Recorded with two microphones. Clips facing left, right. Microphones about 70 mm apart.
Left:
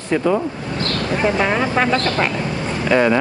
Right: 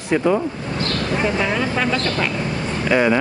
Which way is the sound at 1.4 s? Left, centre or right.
Left.